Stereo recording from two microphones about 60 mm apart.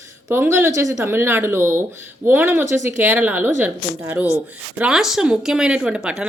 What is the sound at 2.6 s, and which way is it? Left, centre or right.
A woman's voice, right.